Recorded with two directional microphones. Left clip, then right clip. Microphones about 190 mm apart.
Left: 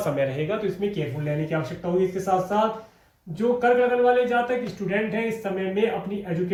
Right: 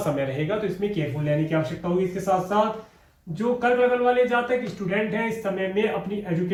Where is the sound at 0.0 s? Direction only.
30° left (ahead or behind).